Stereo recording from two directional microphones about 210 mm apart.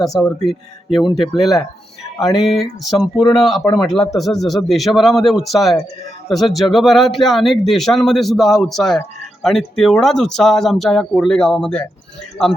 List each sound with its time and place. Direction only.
0.0 s speech: centre (ahead or behind)
3.6 s speech: 20° left (ahead or behind)
4.1 s speech: centre (ahead or behind)